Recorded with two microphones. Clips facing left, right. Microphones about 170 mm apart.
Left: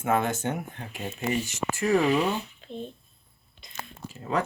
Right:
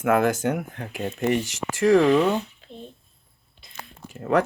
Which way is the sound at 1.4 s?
90° right.